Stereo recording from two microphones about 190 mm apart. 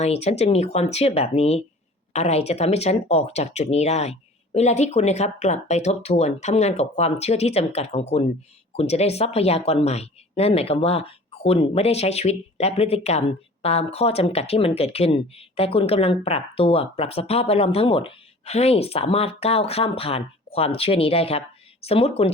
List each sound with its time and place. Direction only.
0.0 s speech: 35° left (ahead or behind)